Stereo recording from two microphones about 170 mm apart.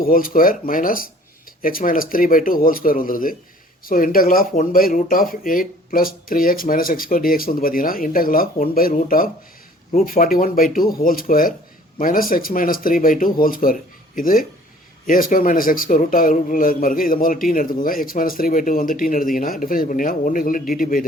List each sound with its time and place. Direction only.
0.0 s a man's voice: 55° left (ahead or behind)